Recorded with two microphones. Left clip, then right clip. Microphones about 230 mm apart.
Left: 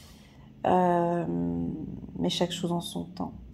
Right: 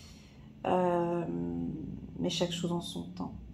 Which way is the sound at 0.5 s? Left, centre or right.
Left.